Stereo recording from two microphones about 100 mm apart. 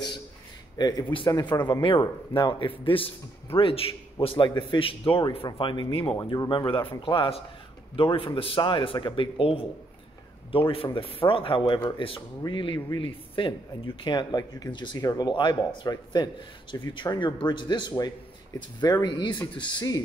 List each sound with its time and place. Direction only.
0.7 s a man's voice: 40° left (ahead or behind)